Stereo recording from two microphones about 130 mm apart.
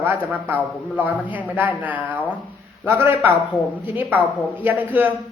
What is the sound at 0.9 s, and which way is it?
Speech, 15° right (ahead or behind).